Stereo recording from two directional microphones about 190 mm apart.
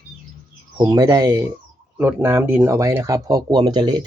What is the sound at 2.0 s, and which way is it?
Speech, 10° right (ahead or behind).